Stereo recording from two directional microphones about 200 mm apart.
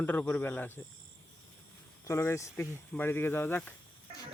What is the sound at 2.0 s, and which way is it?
Speech, 15° left (ahead or behind).